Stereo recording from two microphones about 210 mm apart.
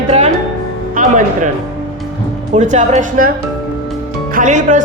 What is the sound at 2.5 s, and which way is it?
Speech, 35° right (ahead or behind).